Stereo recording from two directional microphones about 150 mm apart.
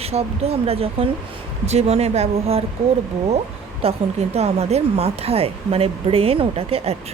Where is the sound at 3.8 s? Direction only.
45° right (ahead or behind).